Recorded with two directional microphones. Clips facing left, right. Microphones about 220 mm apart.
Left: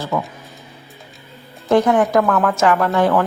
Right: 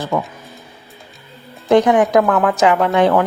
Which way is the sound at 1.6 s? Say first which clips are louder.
Right 2 dB; 15° right (ahead or behind).